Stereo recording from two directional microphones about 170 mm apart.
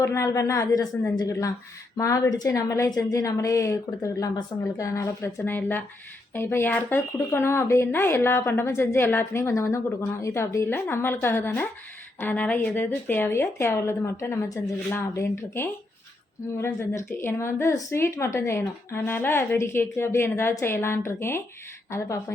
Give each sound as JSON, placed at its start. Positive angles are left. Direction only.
{"t": 0.0, "sound": "a woman's voice", "side_deg": 15}